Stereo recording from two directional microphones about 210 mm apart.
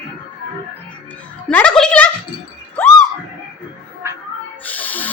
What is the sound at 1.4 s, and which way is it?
Speech, 5° left (ahead or behind).